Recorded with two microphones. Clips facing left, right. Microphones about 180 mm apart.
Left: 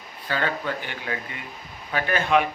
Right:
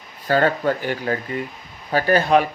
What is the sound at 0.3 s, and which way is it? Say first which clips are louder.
Speech: right 9 dB; 45° right (ahead or behind).